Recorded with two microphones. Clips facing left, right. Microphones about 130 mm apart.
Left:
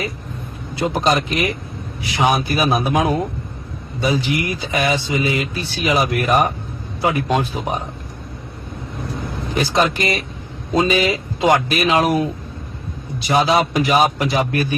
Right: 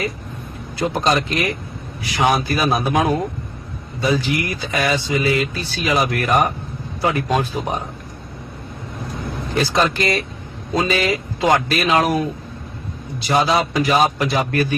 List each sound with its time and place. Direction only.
0.8 s a man's voice: 25° left (ahead or behind)
9.6 s a man's voice: 20° left (ahead or behind)
13.1 s a man's voice: 20° left (ahead or behind)